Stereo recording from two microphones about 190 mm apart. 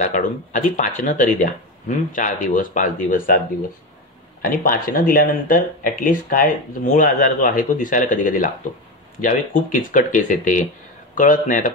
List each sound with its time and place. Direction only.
0.0 s speech: 40° left (ahead or behind)
4.4 s speech: 50° left (ahead or behind)